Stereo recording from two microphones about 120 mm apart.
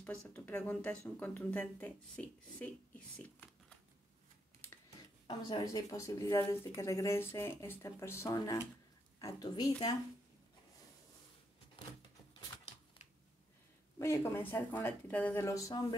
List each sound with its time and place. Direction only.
0.0 s speech: 15° left (ahead or behind)
3.2 s a sound: 10° left (ahead or behind)
5.2 s speech: 35° left (ahead or behind)
13.9 s speech: 25° left (ahead or behind)
15.4 s speech: 25° left (ahead or behind)